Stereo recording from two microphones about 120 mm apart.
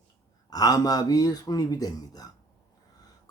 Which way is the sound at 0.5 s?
30° left (ahead or behind).